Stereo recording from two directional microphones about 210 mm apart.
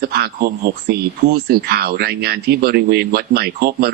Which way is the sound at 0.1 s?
50° right (ahead or behind).